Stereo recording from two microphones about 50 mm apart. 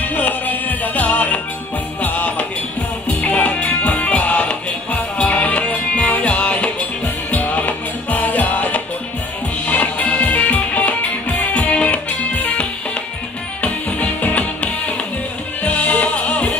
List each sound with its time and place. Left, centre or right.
0.0 s music: left